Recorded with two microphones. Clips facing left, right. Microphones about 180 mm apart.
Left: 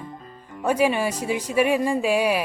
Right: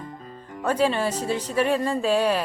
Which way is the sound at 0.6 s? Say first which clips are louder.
Left 1 dB; 10° left (ahead or behind).